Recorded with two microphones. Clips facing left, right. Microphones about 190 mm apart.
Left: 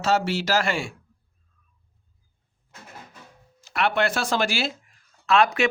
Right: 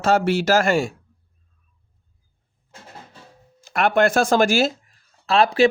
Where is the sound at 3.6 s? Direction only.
45° right (ahead or behind).